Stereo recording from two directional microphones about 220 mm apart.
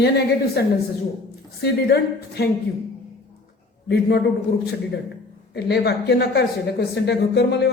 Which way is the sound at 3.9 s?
50° left (ahead or behind).